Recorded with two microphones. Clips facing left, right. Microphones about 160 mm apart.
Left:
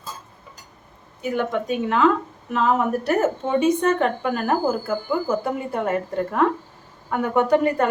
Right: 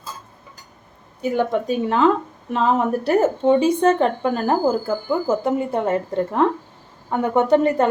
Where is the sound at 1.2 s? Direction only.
35° right (ahead or behind).